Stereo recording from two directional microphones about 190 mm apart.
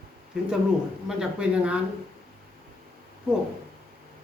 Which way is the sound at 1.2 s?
5° right (ahead or behind).